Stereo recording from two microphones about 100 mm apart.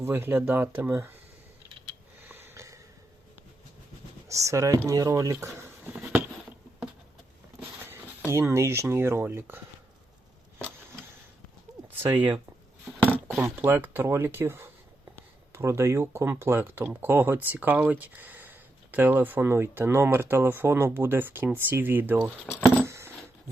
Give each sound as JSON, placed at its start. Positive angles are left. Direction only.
{"t": 0.0, "sound": "speech", "side_deg": -25}
{"t": 2.3, "sound": "a sound", "side_deg": -25}
{"t": 4.3, "sound": "speech", "side_deg": -30}
{"t": 8.3, "sound": "speech", "side_deg": -25}
{"t": 11.9, "sound": "speech", "side_deg": -20}
{"t": 13.6, "sound": "speech", "side_deg": -20}
{"t": 22.4, "sound": "speech", "side_deg": 25}
{"t": 22.9, "sound": "a sound", "side_deg": -25}